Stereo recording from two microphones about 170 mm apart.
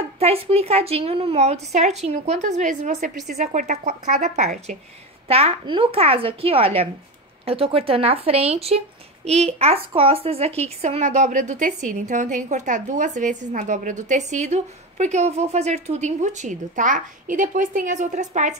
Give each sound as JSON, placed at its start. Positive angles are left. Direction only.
{"t": 0.2, "sound": "a woman's voice", "side_deg": -35}